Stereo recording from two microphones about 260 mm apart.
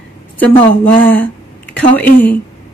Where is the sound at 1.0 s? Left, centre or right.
Centre.